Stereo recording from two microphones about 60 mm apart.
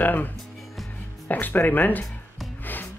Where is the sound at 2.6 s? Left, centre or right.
Left.